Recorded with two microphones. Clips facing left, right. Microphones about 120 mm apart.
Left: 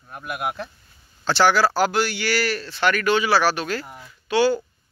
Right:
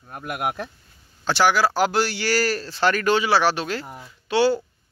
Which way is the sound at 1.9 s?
35° right (ahead or behind).